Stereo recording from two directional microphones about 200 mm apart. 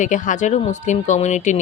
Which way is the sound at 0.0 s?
40° left (ahead or behind).